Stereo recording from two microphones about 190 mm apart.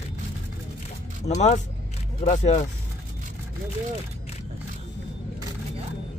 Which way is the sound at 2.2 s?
40° left (ahead or behind).